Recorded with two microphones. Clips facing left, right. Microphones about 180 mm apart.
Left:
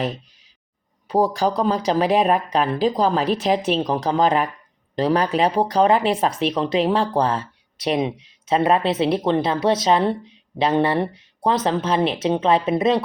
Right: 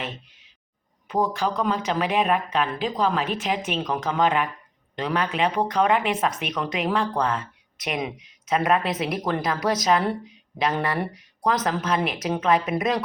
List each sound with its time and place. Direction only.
1.0 s speech: 35° left (ahead or behind)